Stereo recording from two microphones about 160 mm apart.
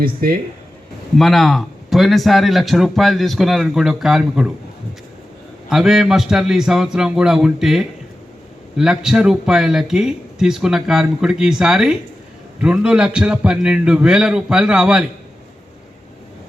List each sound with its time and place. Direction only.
0.0 s speech: 65° right (ahead or behind)
1.1 s speech: centre (ahead or behind)
5.6 s speech: 5° right (ahead or behind)